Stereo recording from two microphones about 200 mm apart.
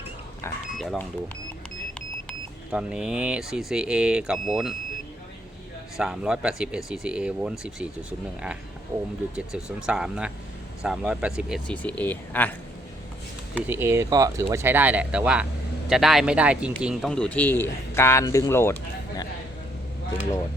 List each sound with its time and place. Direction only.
0.8 s speech: centre (ahead or behind)
2.7 s speech: 5° right (ahead or behind)
6.0 s speech: 5° right (ahead or behind)
8.9 s speech: 10° right (ahead or behind); by 12.5 s 10° left (ahead or behind)
13.6 s speech: 10° right (ahead or behind); by 19.3 s 15° left (ahead or behind)